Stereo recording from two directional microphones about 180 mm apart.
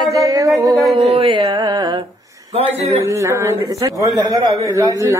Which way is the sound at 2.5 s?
35° right (ahead or behind).